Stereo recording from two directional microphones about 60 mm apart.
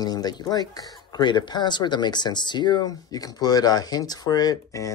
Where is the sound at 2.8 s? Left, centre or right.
Left.